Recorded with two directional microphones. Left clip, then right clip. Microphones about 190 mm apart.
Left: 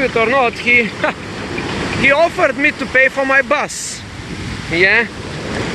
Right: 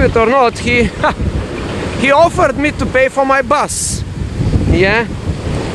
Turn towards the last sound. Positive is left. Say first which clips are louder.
# even
turn(degrees=-20)  # may be behind; listen again after turning